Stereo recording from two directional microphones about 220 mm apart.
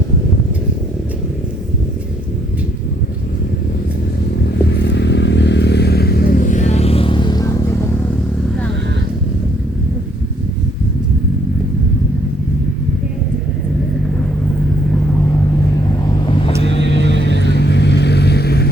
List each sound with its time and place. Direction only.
4.7 s vehicle: 55° left (ahead or behind); by 7.6 s 15° left (ahead or behind)
16.8 s vehicle: 55° right (ahead or behind)
17.5 s vehicle: 50° left (ahead or behind)